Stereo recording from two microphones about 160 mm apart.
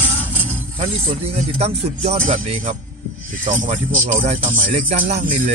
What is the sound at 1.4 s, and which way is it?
Speech, 40° right (ahead or behind).